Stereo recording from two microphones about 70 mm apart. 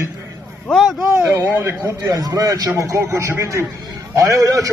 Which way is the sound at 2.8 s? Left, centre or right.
Right.